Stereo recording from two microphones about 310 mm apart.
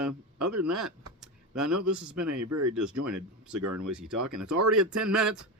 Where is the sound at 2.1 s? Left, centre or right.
Right.